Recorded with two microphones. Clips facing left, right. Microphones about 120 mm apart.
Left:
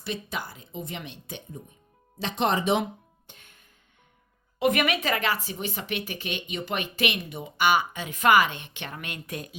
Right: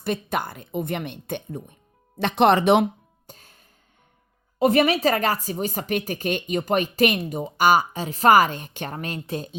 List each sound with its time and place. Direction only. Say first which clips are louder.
0.0 s speech: right 7 dB; 55° right (ahead or behind)
3.2 s music: right 10 dB; 35° right (ahead or behind)
4.6 s speech: right 6 dB; 35° right (ahead or behind)